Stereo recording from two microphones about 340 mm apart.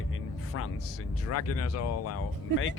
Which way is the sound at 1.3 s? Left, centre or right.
Left.